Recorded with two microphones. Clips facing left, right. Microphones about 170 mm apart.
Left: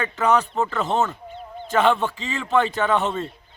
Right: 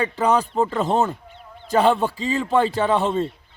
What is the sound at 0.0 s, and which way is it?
Speech, 35° right (ahead or behind).